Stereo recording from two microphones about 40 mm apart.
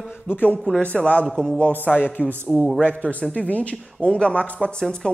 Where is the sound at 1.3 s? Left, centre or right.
Centre.